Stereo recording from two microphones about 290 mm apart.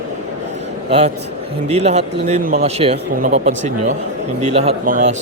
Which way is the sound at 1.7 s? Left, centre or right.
Right.